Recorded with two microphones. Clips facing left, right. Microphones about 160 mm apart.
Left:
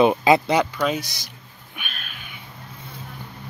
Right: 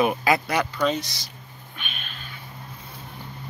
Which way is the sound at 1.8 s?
15° left (ahead or behind).